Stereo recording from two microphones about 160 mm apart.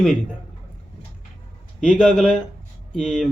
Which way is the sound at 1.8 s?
5° left (ahead or behind).